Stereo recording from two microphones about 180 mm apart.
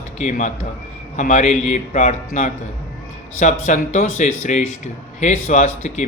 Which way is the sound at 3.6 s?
40° left (ahead or behind).